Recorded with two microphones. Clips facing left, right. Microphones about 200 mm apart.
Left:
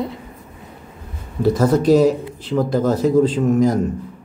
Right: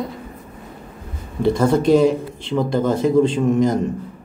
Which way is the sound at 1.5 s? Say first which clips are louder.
Left 1 dB; 5° left (ahead or behind).